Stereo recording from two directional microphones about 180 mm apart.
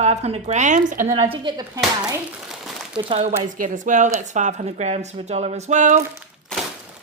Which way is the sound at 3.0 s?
35° right (ahead or behind).